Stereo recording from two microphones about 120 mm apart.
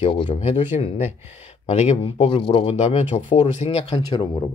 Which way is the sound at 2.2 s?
50° left (ahead or behind).